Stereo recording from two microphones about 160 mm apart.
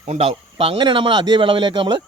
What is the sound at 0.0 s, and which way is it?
A man's voice, 40° right (ahead or behind).